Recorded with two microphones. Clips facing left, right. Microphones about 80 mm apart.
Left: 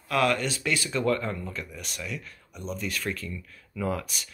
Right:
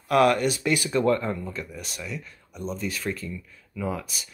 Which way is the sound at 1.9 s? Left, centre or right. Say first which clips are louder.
Left 1 dB; centre.